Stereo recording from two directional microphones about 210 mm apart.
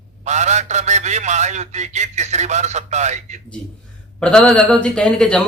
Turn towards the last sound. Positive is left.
turn(degrees=5)  # may be behind; listen again after turning